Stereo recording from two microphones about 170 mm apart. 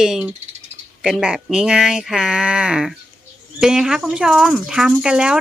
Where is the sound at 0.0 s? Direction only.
5° right (ahead or behind).